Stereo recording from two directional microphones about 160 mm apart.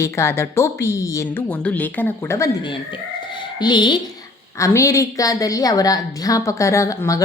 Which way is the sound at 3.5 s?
30° left (ahead or behind).